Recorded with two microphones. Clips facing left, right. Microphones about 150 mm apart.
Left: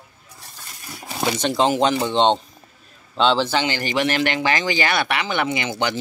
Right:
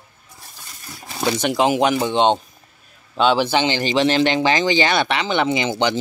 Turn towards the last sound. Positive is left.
turn(degrees=-20)  # may be behind; listen again after turning